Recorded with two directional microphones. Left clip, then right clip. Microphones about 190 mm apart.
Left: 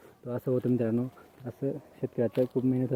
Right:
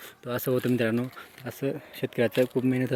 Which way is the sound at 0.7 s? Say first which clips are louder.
Right 3 dB; 10° right (ahead or behind).